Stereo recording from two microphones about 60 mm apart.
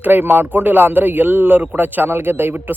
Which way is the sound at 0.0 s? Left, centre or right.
Right.